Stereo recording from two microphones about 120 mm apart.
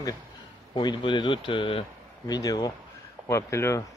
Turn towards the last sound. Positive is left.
turn(degrees=25)  # may be behind; listen again after turning